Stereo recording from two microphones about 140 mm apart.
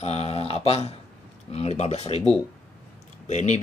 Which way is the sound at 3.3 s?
55° left (ahead or behind).